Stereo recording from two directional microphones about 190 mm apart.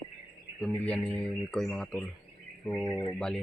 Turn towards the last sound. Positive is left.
turn(degrees=20)  # may be behind; listen again after turning